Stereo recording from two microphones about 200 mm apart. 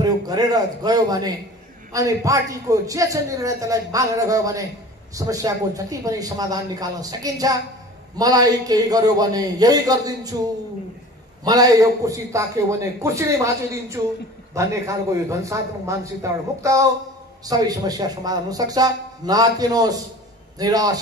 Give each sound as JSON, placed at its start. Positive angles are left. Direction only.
{"t": 0.0, "sound": "a man's voice", "side_deg": -20}
{"t": 11.4, "sound": "a man's voice", "side_deg": -20}